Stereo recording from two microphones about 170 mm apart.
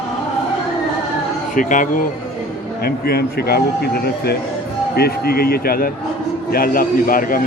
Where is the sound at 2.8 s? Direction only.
65° left (ahead or behind).